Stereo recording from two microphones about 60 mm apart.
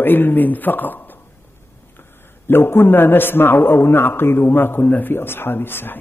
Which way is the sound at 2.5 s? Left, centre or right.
Left.